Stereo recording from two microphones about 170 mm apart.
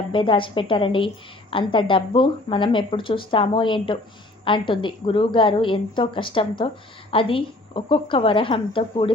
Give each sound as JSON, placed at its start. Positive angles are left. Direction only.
{"t": 0.1, "sound": "a woman's voice", "side_deg": 30}